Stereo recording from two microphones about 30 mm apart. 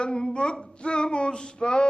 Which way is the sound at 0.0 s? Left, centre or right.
Left.